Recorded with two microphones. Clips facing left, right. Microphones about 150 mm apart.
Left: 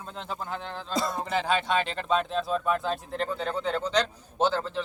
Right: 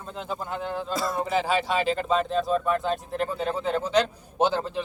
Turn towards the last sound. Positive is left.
turn(degrees=-15)  # may be behind; listen again after turning